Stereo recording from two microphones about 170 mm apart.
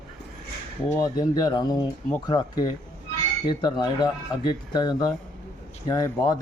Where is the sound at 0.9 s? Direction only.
20° left (ahead or behind).